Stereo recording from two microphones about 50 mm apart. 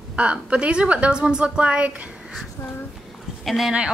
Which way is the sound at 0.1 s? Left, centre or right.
Right.